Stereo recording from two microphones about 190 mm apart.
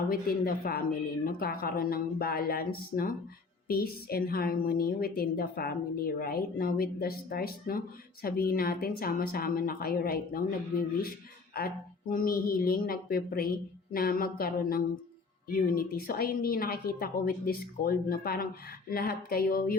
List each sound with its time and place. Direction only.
0.1 s a woman's voice: 50° left (ahead or behind)